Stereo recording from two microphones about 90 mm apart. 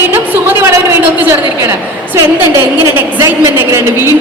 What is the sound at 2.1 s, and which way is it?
A woman's voice, 30° right (ahead or behind).